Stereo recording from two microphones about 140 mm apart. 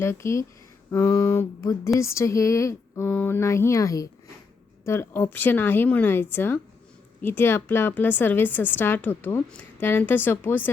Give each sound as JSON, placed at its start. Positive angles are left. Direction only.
{"t": 0.0, "sound": "a woman's voice", "side_deg": 20}